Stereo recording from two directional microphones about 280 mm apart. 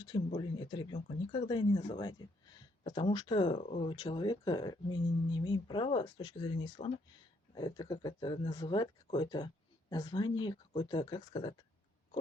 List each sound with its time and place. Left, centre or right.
0.0 s speech: centre